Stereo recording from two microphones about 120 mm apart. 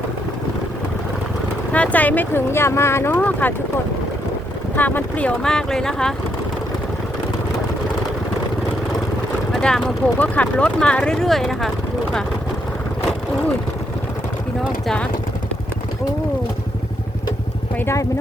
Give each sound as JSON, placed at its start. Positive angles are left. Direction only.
{"t": 1.7, "sound": "speech", "side_deg": 10}
{"t": 4.8, "sound": "speech", "side_deg": 15}
{"t": 9.5, "sound": "speech", "side_deg": 5}
{"t": 17.7, "sound": "speech", "side_deg": 20}